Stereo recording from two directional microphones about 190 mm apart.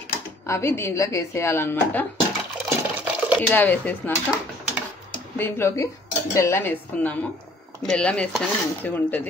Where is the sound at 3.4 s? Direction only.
10° left (ahead or behind).